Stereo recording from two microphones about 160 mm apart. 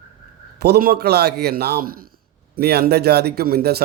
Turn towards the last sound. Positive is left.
turn(degrees=-75)  # may be behind; listen again after turning